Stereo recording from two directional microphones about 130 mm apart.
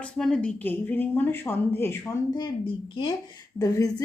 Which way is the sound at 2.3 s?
35° left (ahead or behind).